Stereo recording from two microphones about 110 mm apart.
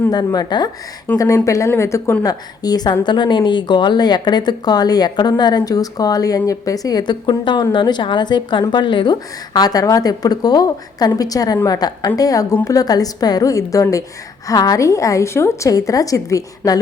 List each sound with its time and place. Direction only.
0.1 s speech: 40° left (ahead or behind)
1.1 s speech: 15° left (ahead or behind)
1.5 s a woman's voice: 25° left (ahead or behind)